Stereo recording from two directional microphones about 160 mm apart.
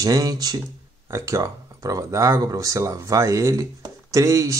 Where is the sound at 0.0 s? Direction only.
20° right (ahead or behind).